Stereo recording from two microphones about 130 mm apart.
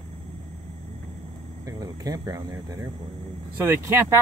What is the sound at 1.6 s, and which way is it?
Speech, 30° right (ahead or behind).